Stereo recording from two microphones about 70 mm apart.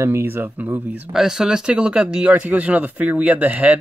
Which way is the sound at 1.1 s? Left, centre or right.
Centre.